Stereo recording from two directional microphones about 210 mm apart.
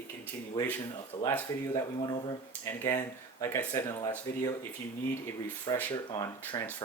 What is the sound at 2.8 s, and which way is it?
Speech, 15° left (ahead or behind).